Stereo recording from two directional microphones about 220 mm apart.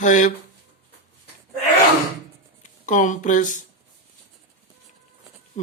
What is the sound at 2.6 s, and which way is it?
Speech, 35° left (ahead or behind).